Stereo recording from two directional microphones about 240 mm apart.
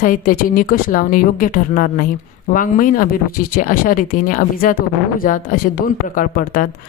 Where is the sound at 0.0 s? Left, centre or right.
Left.